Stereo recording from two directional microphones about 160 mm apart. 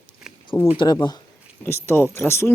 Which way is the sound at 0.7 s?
25° left (ahead or behind).